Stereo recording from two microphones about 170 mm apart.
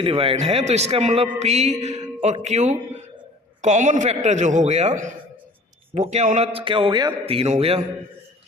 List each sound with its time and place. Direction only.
0.0 s a man's voice: 35° right (ahead or behind)